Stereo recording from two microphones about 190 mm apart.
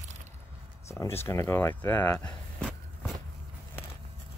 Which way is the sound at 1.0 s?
15° left (ahead or behind).